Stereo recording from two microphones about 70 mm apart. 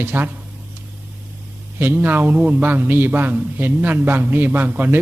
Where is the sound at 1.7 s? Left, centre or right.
Right.